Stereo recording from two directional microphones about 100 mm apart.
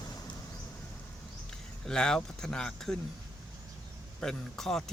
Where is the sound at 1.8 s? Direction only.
5° left (ahead or behind).